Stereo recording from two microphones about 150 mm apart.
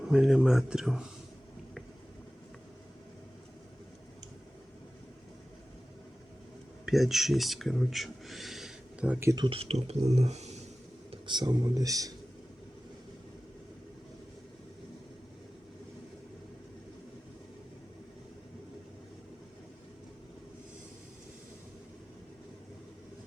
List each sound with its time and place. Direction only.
0.1 s speech: 5° right (ahead or behind)
6.8 s speech: centre (ahead or behind)
9.3 s speech: 35° right (ahead or behind)
11.1 s speech: 30° right (ahead or behind)